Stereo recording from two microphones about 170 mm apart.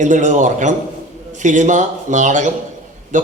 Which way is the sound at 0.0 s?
45° right (ahead or behind).